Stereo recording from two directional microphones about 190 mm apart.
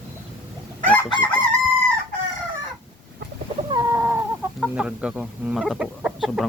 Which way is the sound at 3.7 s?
20° right (ahead or behind).